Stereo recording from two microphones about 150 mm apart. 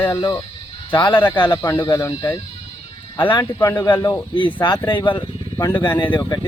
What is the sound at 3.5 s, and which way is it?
Speech, 30° left (ahead or behind).